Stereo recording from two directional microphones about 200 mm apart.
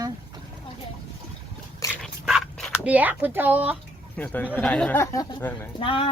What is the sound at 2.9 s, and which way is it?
Speech, 10° right (ahead or behind).